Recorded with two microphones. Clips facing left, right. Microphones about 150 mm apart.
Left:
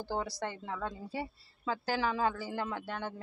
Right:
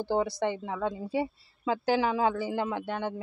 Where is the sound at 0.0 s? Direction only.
20° right (ahead or behind).